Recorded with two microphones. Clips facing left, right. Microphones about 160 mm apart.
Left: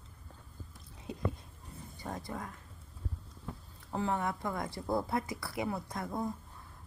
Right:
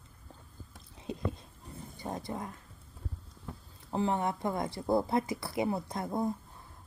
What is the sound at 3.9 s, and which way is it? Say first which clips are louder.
Speech: right 3 dB; 25° right (ahead or behind).